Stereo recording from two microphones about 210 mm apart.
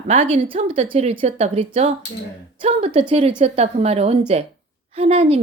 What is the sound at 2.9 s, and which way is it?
A woman's voice, 30° right (ahead or behind).